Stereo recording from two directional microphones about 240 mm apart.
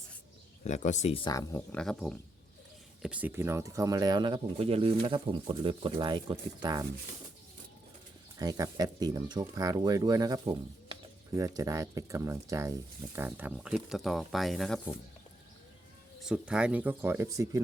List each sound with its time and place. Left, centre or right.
0.6 s speech: left; by 6.8 s centre
8.4 s speech: centre
16.2 s speech: centre